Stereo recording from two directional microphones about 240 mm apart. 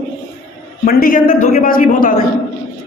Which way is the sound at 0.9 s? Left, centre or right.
Left.